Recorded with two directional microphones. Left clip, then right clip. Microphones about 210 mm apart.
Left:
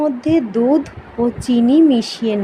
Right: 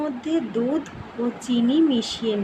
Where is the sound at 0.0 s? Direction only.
25° left (ahead or behind).